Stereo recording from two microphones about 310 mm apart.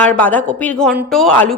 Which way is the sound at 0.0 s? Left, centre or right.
Centre.